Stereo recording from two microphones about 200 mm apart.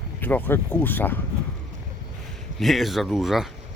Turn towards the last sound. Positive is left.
turn(degrees=0)  # may be behind; listen again after turning